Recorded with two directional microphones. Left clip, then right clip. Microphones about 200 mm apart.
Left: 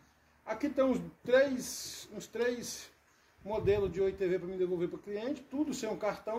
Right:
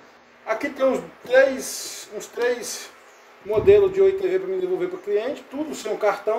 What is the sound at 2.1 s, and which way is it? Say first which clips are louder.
A man's voice: right 10 dB; 45° left (ahead or behind).